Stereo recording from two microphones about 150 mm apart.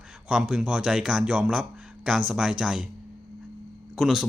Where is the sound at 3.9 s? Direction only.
Centre (ahead or behind).